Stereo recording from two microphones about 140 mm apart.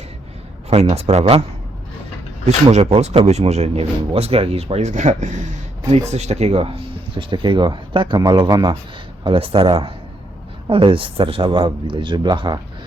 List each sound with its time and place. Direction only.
0.7 s speech: 50° right (ahead or behind)
2.6 s speech: 45° right (ahead or behind); by 12.5 s 30° right (ahead or behind)